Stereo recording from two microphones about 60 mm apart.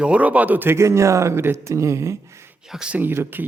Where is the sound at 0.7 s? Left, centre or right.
Right.